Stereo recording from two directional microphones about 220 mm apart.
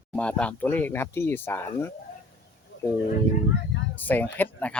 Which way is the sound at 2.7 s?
55° left (ahead or behind).